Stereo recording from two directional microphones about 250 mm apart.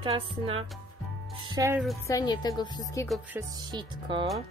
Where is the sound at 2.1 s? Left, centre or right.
Centre.